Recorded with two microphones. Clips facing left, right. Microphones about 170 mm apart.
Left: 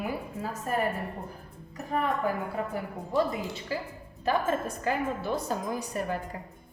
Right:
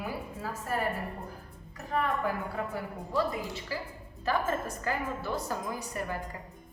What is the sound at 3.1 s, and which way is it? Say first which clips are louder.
A woman's voice: left 3 dB; 20° left (ahead or behind).